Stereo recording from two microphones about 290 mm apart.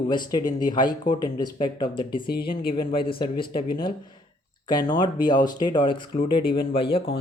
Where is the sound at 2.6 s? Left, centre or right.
Centre.